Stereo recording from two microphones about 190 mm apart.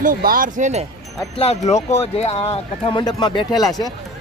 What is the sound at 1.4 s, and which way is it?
Speech, 35° left (ahead or behind).